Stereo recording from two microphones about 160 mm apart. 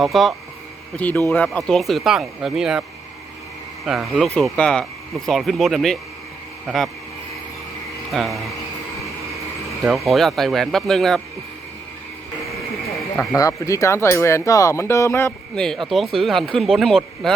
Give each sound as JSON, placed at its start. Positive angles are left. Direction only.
{"t": 0.0, "sound": "speech", "side_deg": 0}
{"t": 3.8, "sound": "speech", "side_deg": 0}
{"t": 8.1, "sound": "speech", "side_deg": 0}
{"t": 9.8, "sound": "speech", "side_deg": 0}
{"t": 13.1, "sound": "speech", "side_deg": 20}
{"t": 16.1, "sound": "speech", "side_deg": 0}